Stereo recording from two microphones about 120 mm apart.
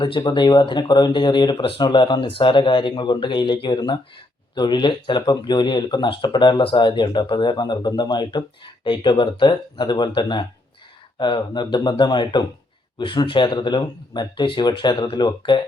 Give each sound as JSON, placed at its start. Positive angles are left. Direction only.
{"t": 0.0, "sound": "speech", "side_deg": 40}